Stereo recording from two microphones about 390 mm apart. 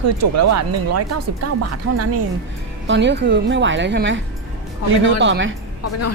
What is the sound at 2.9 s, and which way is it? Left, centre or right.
Speech, right.